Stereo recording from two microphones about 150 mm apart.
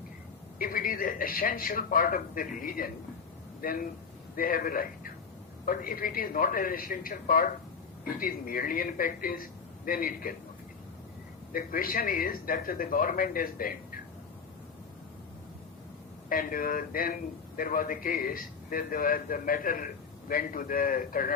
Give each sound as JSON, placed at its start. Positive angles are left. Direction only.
{"t": 0.6, "sound": "a man's voice", "side_deg": 70}
{"t": 11.5, "sound": "a man's voice", "side_deg": 70}
{"t": 16.3, "sound": "a man's voice", "side_deg": 70}